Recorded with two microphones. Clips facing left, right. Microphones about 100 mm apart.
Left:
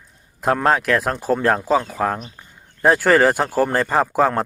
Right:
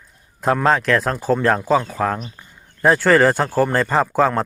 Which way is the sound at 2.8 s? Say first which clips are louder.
Right 1 dB; 10° left (ahead or behind).